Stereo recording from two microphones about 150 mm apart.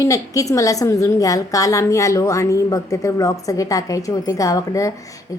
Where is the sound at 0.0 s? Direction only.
20° left (ahead or behind).